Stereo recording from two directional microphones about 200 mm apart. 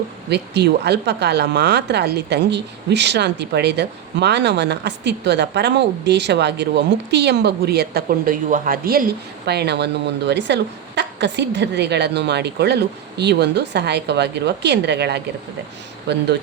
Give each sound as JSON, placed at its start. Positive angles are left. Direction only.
{"t": 0.3, "sound": "speech", "side_deg": -55}